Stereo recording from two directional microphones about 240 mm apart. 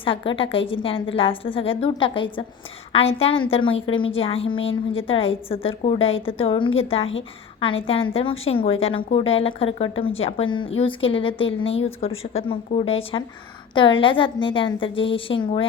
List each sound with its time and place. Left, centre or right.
0.0 s a woman's voice: left
3.5 s a woman's voice: left